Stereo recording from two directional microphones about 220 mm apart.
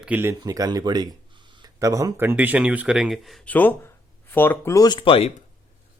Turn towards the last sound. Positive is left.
turn(degrees=25)  # may be behind; listen again after turning